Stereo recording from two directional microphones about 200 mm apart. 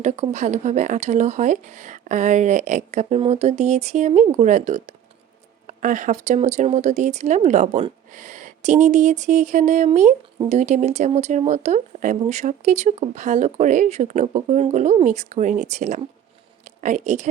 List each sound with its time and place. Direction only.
0.0 s speech: 35° right (ahead or behind)